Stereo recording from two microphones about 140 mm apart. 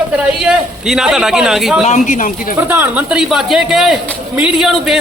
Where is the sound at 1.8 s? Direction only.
55° left (ahead or behind); by 2.6 s 75° left (ahead or behind).